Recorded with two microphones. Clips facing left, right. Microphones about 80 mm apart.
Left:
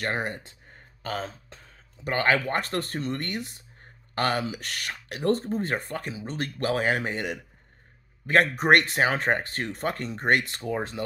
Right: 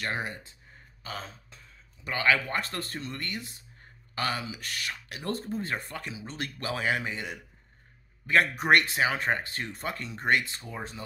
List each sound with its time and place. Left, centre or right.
0.0 s speech: left
2.0 s speech: left
10.4 s speech: left